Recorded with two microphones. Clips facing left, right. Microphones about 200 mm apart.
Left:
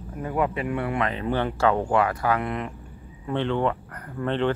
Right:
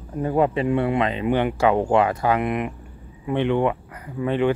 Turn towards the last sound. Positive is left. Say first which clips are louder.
# right 3 dB
turn(degrees=-10)  # may be behind; listen again after turning